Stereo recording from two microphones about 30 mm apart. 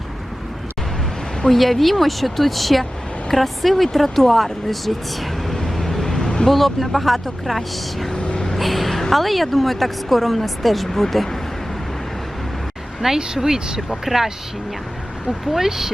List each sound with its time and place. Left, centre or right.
1.5 s speech: centre
5.5 s vehicle: centre
6.2 s vehicle: left
6.5 s speech: centre
8.5 s a sound: centre
9.2 s speech: centre
13.1 s speech: right
14.0 s speech: centre
15.5 s speech: centre